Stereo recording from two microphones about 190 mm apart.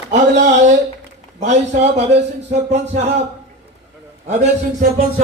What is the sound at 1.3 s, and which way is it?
Speech, 35° right (ahead or behind).